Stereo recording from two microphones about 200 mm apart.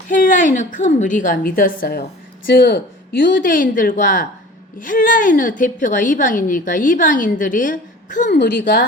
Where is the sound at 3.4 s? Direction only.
40° left (ahead or behind).